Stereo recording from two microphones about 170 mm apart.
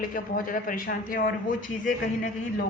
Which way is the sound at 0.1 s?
55° left (ahead or behind).